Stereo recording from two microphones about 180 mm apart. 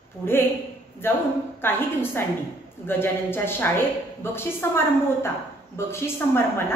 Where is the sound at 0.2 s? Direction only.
15° left (ahead or behind).